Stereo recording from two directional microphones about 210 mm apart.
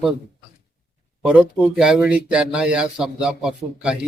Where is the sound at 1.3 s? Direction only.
5° right (ahead or behind).